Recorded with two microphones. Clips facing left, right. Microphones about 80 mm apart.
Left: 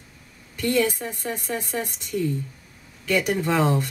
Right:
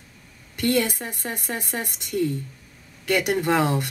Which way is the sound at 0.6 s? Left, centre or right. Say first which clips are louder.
Even; right.